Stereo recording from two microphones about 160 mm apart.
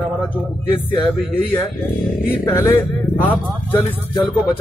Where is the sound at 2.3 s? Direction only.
15° left (ahead or behind).